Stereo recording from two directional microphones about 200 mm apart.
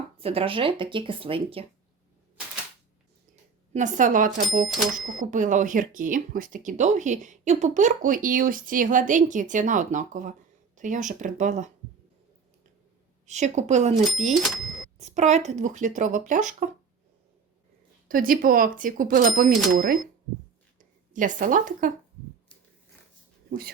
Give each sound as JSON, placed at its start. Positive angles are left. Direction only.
{"t": 0.2, "sound": "speech", "side_deg": -30}
{"t": 3.7, "sound": "speech", "side_deg": -40}
{"t": 13.2, "sound": "speech", "side_deg": -35}
{"t": 14.4, "sound": "cash register", "side_deg": 0}
{"t": 14.9, "sound": "speech", "side_deg": -35}
{"t": 18.1, "sound": "speech", "side_deg": -45}
{"t": 23.5, "sound": "speech", "side_deg": -50}